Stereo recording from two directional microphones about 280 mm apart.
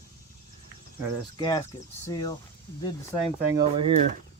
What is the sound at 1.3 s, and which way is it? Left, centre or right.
Speech, centre.